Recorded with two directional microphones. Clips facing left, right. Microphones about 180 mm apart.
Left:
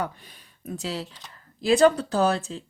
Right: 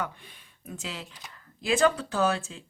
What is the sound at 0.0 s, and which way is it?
Speech, 40° left (ahead or behind).